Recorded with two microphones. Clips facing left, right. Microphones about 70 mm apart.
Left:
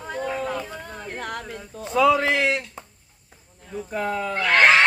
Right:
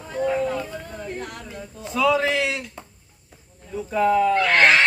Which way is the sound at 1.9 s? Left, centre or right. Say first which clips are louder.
Left 2 dB; left.